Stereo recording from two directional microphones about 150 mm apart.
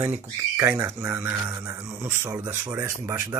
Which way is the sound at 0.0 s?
15° right (ahead or behind).